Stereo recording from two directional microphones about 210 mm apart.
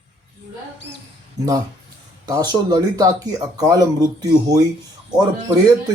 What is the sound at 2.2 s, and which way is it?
Speech, 20° right (ahead or behind).